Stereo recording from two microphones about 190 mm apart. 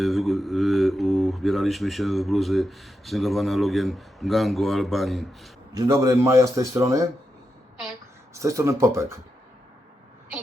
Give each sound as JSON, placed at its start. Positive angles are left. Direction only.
{"t": 0.0, "sound": "speech", "side_deg": 0}
{"t": 5.7, "sound": "a man's voice", "side_deg": -20}
{"t": 8.3, "sound": "a man's voice", "side_deg": -15}